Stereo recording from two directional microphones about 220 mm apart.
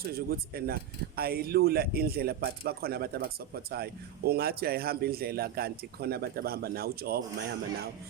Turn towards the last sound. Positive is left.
turn(degrees=-45)  # may be behind; listen again after turning